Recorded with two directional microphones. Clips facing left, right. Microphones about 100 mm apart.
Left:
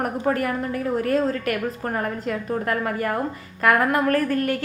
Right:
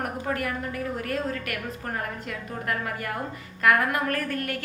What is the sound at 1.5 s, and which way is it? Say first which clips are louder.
Speech: left 8 dB; 40° left (ahead or behind).